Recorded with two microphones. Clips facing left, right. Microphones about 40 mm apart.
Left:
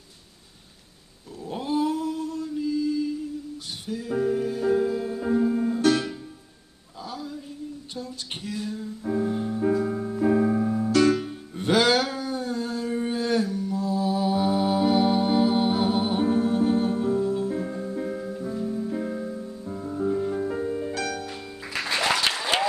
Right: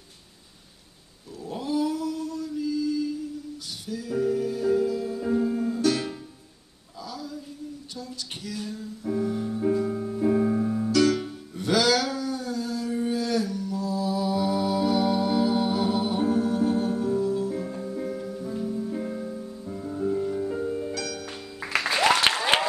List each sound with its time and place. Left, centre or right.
1.5 s male singing: left
3.8 s music: left
5.8 s music: left
7.1 s a sound: left
7.9 s music: left; by 10.9 s centre
10.9 s music: left
18.5 s music: centre
20.1 s music: left
20.6 s music: centre
20.9 s music: left
21.3 s music: right
21.9 s applause: right